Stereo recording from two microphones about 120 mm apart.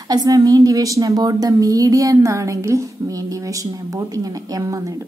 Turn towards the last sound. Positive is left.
turn(degrees=-30)  # may be behind; listen again after turning